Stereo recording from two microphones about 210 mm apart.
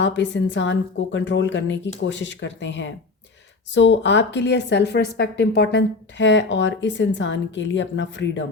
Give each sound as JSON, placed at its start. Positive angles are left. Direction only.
{"t": 0.0, "sound": "speech", "side_deg": 60}